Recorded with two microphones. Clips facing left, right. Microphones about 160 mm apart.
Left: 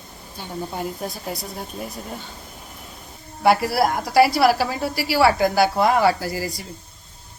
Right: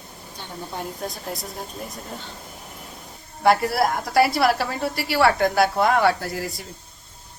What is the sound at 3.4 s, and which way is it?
A woman's voice, 5° left (ahead or behind).